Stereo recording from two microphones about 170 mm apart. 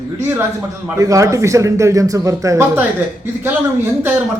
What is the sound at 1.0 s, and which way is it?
Speech, 20° right (ahead or behind).